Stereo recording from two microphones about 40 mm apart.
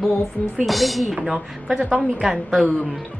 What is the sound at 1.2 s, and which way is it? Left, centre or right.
Speech, centre.